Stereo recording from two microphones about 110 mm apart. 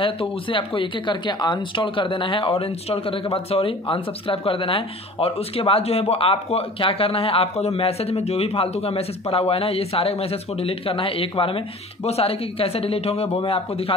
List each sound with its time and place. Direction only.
0.0 s speech: 50° left (ahead or behind)